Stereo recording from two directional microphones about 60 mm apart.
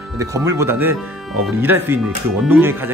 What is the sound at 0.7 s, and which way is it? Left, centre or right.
Speech, right.